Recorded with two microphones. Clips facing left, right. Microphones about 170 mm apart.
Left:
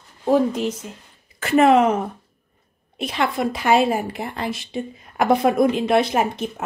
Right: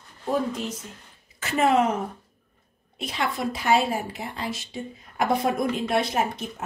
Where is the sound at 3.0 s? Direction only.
65° left (ahead or behind).